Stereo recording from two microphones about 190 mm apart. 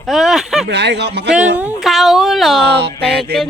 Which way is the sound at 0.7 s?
65° right (ahead or behind).